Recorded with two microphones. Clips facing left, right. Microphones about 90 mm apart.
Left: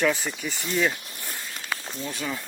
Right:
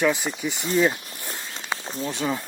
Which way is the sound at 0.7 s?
25° right (ahead or behind).